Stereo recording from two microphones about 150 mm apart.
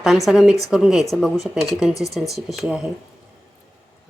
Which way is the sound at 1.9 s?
20° left (ahead or behind).